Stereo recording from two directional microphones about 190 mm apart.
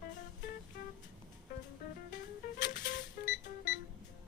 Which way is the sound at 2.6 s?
45° left (ahead or behind).